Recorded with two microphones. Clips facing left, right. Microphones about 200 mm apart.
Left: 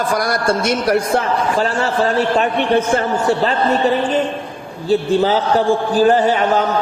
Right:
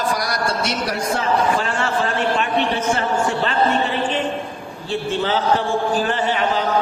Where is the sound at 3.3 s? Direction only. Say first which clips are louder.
Left 4 dB; 40° left (ahead or behind).